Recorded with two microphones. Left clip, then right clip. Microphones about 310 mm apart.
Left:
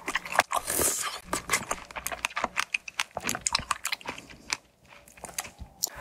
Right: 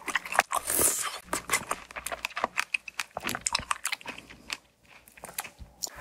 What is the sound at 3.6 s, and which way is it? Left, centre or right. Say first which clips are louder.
Chewing: left 1 dB; left.